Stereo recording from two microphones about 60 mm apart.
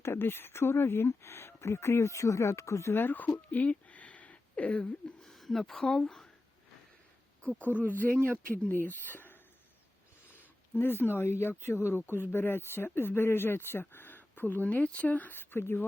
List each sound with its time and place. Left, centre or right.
0.0 s speech: left
2.9 s speech: left
3.5 s a sound: left
5.2 s speech: centre
7.8 s speech: left
8.1 s speech: right
8.7 s speech: left